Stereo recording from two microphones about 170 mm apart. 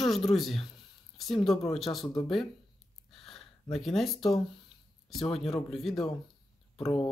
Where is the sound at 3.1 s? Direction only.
Centre (ahead or behind).